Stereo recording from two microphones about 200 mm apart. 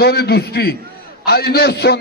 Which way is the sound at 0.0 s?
55° left (ahead or behind).